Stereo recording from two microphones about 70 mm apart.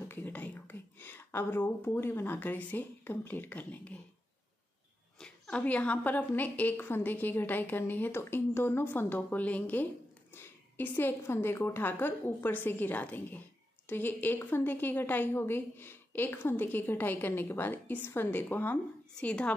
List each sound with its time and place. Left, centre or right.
0.1 s a woman's voice: left
5.2 s a woman's voice: centre
19.1 s a woman's voice: centre